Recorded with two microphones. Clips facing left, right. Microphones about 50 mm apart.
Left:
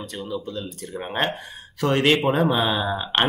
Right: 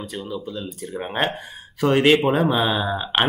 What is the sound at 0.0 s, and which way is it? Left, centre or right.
Speech, centre.